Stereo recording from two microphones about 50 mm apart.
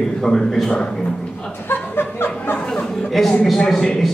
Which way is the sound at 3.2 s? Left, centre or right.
Centre.